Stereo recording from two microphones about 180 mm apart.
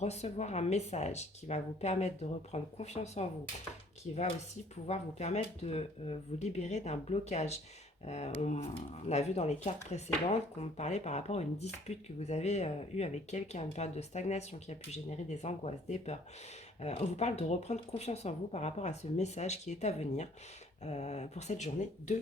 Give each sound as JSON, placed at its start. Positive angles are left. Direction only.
{"t": 0.0, "sound": "speech", "side_deg": 40}
{"t": 4.9, "sound": "speech", "side_deg": 40}